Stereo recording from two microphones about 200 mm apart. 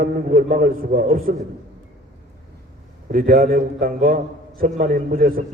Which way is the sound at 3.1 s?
45° right (ahead or behind).